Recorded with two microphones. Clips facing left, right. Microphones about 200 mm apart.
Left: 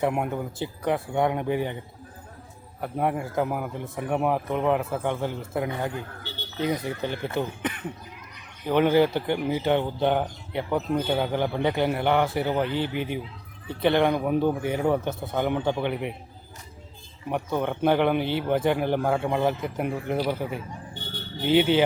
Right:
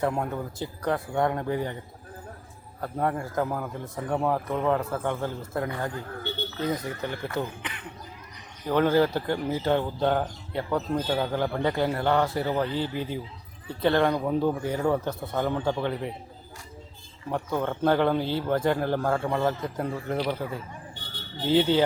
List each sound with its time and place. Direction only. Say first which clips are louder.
0.0 s a man's voice: left 2 dB; 15° left (ahead or behind)
2.8 s a man's voice: left 1 dB; 15° left (ahead or behind)
4.8 s speech: left 1 dB; 5° left (ahead or behind)
5.2 s speech: left 2 dB; 20° left (ahead or behind)
8.6 s a man's voice: left 2 dB; 20° left (ahead or behind)
17.2 s a man's voice: left 1 dB; 15° left (ahead or behind)